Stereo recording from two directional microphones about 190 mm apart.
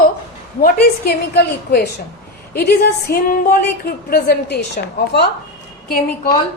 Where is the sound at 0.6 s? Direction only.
55° left (ahead or behind).